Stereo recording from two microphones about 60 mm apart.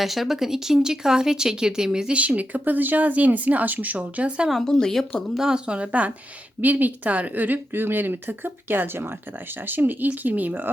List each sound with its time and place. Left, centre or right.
0.0 s speech: centre; by 4.4 s right
4.6 s speech: centre
5.4 s speech: centre; by 10.7 s right